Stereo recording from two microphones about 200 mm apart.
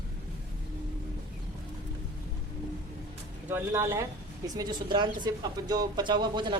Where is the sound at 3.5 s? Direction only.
10° right (ahead or behind).